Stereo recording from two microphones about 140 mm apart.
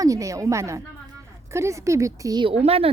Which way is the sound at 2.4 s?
45° right (ahead or behind).